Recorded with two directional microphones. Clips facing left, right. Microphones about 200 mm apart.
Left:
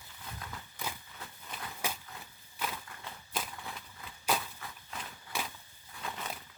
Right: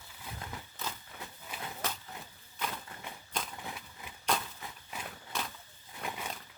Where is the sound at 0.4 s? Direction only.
25° right (ahead or behind).